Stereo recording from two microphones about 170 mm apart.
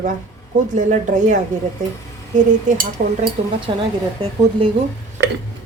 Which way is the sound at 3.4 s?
40° right (ahead or behind).